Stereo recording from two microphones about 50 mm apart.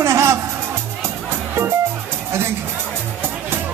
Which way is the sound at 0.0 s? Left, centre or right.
Right.